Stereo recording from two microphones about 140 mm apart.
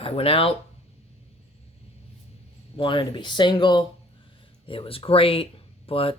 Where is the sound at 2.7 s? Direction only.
35° left (ahead or behind).